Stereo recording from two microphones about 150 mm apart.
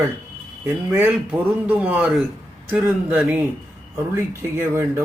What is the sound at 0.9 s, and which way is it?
Speech, 10° right (ahead or behind).